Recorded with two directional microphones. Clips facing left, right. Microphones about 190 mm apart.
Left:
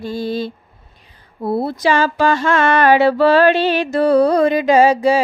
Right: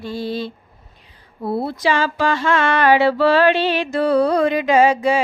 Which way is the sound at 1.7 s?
40° left (ahead or behind).